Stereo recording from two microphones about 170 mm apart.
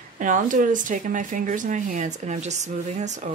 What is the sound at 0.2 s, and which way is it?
Speech, 50° right (ahead or behind).